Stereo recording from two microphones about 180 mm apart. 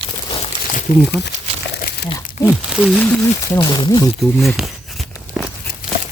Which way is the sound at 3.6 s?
25° left (ahead or behind).